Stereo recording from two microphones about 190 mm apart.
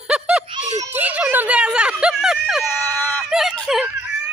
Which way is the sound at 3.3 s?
Centre (ahead or behind).